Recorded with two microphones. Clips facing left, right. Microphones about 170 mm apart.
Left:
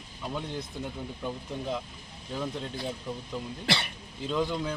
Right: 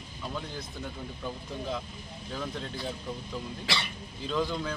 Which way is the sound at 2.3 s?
15° left (ahead or behind).